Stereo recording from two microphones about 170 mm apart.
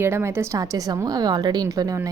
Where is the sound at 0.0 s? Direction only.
15° right (ahead or behind).